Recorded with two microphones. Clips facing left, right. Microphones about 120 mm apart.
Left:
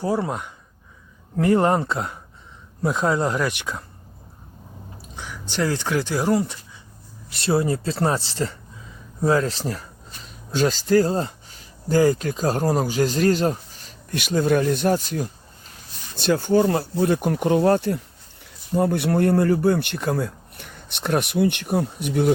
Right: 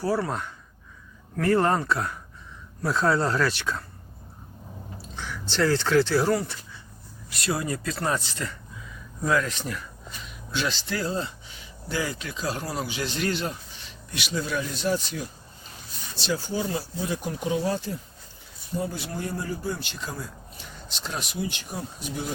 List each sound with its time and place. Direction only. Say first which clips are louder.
0.0 s speech: left 2 dB; 20° left (ahead or behind)
5.1 s speech: left 1 dB; 15° left (ahead or behind)
7.3 s speech: left 7 dB; 30° left (ahead or behind); by 22.3 s 65° left (ahead or behind)